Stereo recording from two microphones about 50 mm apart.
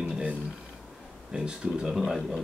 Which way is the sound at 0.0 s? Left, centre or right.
Centre.